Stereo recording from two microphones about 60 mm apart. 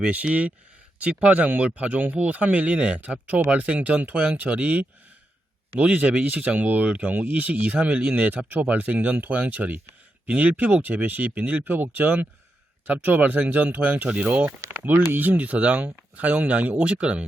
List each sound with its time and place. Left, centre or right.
0.0 s speech: right
14.7 s a sound: right
15.1 s speech: right